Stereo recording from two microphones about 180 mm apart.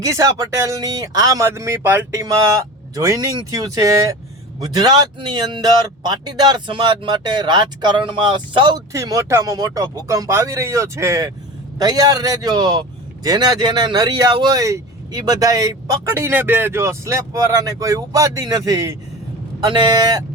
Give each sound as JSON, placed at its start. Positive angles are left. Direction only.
{"t": 0.0, "sound": "speech", "side_deg": -20}